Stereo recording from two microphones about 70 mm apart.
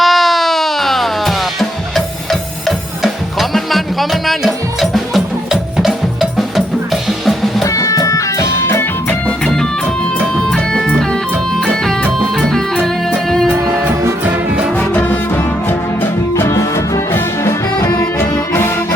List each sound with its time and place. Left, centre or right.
0.0 s a sound: centre
3.5 s music: centre
6.9 s drum kit: centre
7.6 s music: left
10.3 s music: centre
14.8 s music: left
18.2 s music: left